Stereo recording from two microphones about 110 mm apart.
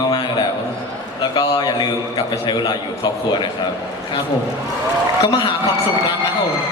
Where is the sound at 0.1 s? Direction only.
45° left (ahead or behind).